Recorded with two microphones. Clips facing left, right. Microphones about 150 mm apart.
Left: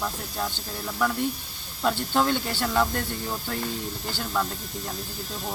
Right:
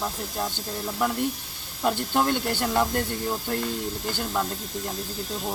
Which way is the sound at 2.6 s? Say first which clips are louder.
Even; 10° right (ahead or behind).